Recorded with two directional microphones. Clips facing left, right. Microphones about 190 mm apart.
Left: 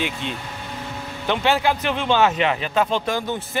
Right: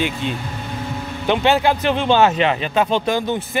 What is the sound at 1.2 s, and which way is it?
A man's voice, 20° right (ahead or behind).